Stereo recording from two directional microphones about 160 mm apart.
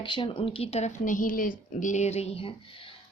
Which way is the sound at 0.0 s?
30° left (ahead or behind).